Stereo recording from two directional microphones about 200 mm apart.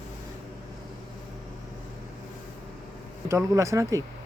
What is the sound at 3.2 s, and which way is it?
Speech, 15° right (ahead or behind).